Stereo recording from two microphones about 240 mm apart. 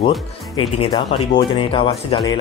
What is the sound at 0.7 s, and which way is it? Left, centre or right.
Speech, left.